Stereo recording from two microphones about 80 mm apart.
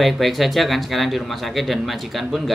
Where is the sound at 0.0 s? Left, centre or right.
Centre.